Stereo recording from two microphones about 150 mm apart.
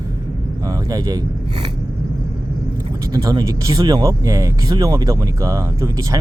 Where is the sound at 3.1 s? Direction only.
25° right (ahead or behind).